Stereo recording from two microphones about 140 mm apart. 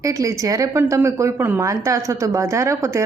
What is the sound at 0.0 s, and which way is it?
A woman's voice, 25° right (ahead or behind).